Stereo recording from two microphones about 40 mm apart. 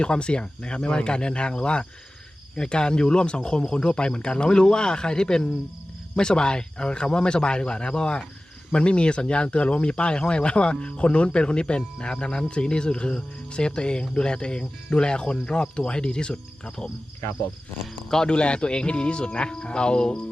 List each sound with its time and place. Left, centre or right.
0.0 s speech: left
18.1 s speech: centre
18.3 s speech: left